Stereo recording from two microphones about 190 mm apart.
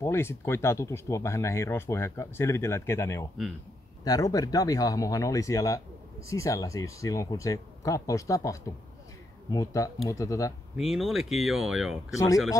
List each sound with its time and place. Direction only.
0.0 s speech: 15° left (ahead or behind)
10.8 s speech: centre (ahead or behind)